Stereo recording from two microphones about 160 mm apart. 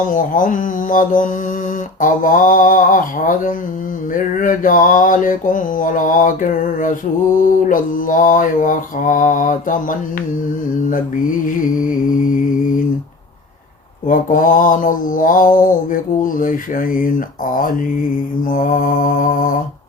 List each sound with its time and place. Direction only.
0.1 s mantra: 55° left (ahead or behind)
14.1 s mantra: 60° left (ahead or behind)